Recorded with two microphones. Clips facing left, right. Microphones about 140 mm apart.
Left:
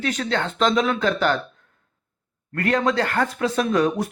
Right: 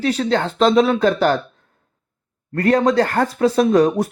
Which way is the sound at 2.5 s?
35° right (ahead or behind).